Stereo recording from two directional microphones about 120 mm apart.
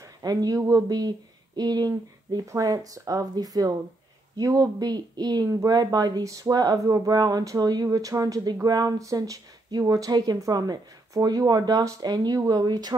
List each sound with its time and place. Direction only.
0.2 s speech: 30° right (ahead or behind)